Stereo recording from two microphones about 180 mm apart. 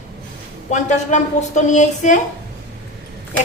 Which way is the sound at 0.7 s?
40° left (ahead or behind).